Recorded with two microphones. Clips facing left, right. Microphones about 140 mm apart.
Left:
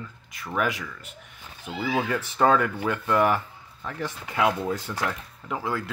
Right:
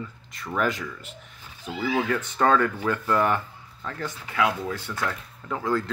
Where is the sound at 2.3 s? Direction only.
15° left (ahead or behind).